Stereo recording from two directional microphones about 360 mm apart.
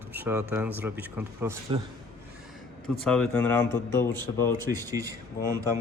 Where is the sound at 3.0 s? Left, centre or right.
Centre.